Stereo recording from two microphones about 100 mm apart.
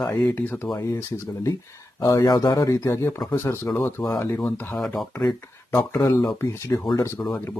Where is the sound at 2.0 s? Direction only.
35° left (ahead or behind).